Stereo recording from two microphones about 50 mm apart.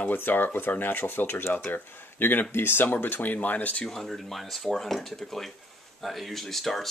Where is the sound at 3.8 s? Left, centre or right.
Centre.